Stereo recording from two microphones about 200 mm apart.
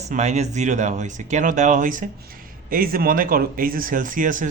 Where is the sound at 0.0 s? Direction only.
35° right (ahead or behind).